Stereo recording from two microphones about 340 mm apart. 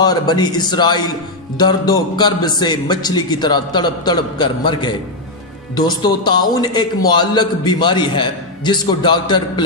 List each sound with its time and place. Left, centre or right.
0.0 s a man's voice: centre